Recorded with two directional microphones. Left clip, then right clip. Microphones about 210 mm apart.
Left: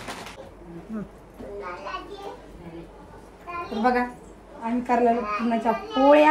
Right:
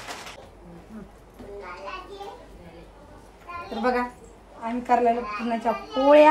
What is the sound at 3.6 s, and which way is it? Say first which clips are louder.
A child's voice: left 2 dB; centre (ahead or behind).